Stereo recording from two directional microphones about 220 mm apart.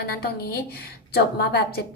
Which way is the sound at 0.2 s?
45° left (ahead or behind).